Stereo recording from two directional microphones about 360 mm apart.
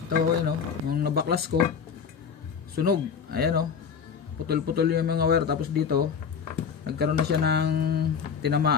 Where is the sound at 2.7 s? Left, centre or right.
Right.